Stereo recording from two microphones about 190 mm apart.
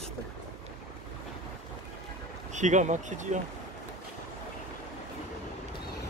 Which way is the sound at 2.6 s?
40° right (ahead or behind).